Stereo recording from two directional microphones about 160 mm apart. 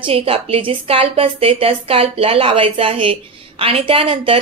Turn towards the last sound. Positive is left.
turn(degrees=-35)  # may be behind; listen again after turning